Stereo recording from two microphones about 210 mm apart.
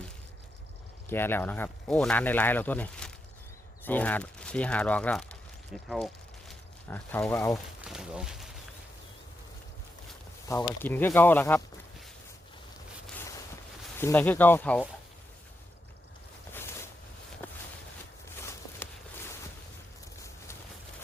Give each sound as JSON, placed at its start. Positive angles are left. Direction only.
{"t": 1.1, "sound": "speech", "side_deg": 10}
{"t": 7.8, "sound": "a sound", "side_deg": -5}
{"t": 10.5, "sound": "speech", "side_deg": 15}
{"t": 13.1, "sound": "boat", "side_deg": 10}
{"t": 14.0, "sound": "speech", "side_deg": 10}
{"t": 16.5, "sound": "a sound", "side_deg": 10}